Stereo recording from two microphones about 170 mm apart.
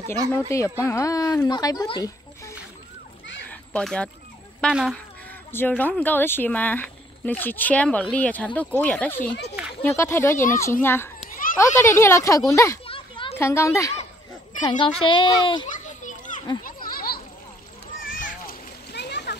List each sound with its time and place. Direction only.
0.5 s speech: 15° left (ahead or behind)
3.4 s children playing: 5° left (ahead or behind)
4.6 s speech: 5° left (ahead or behind)
12.8 s children playing: 30° left (ahead or behind)
13.4 s speech: 15° left (ahead or behind)
14.6 s a child's voice: 30° left (ahead or behind)
15.7 s children playing: 45° left (ahead or behind)
16.6 s a sound: 60° left (ahead or behind)
18.0 s splash: 55° left (ahead or behind); by 19.3 s 80° left